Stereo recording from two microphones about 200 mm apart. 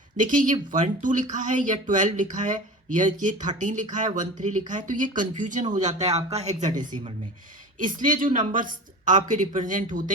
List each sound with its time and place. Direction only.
0.2 s speech: 40° right (ahead or behind)